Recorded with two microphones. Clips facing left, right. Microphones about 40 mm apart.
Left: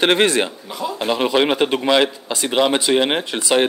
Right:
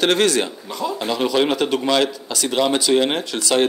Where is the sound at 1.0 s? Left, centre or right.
Left.